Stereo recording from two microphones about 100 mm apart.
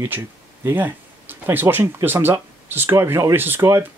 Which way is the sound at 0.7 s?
20° right (ahead or behind).